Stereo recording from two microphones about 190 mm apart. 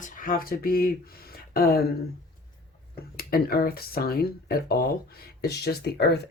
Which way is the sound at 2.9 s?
50° left (ahead or behind).